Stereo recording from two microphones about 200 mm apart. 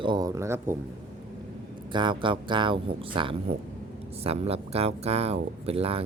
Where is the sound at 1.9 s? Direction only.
25° right (ahead or behind).